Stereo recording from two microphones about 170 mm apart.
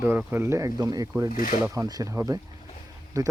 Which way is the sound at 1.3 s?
50° left (ahead or behind).